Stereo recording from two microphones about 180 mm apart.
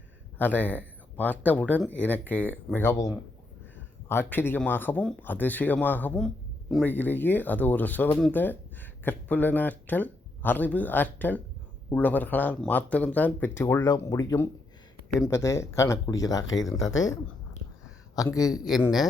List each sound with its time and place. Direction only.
0.3 s speech: 10° left (ahead or behind)
4.1 s speech: 10° left (ahead or behind)
18.3 s speech: 20° left (ahead or behind)